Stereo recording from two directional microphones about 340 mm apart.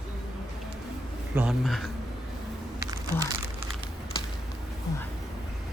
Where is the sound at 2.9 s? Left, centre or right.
Centre.